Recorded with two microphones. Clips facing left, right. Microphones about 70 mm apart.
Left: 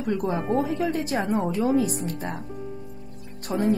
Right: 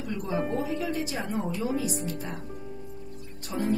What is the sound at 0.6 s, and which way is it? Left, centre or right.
Speech, left.